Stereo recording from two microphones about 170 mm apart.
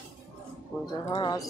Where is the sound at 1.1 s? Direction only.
25° left (ahead or behind).